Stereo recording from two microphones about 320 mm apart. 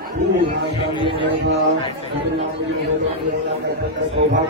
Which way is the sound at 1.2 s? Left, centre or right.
Right.